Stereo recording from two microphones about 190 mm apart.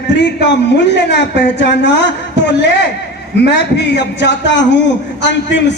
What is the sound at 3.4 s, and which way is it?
A man's voice, 65° left (ahead or behind).